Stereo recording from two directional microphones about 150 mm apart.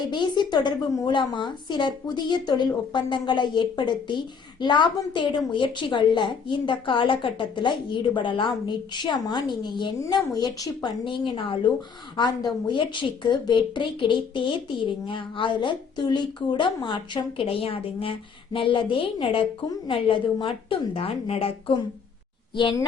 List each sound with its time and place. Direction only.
0.1 s a woman's voice: 30° left (ahead or behind)